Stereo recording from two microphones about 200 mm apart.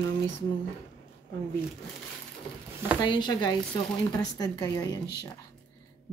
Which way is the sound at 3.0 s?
20° left (ahead or behind).